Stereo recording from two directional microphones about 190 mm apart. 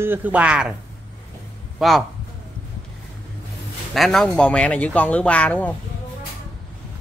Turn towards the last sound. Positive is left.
turn(degrees=10)  # may be behind; listen again after turning